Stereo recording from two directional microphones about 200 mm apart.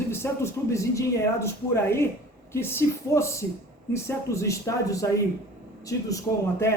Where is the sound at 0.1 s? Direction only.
10° left (ahead or behind).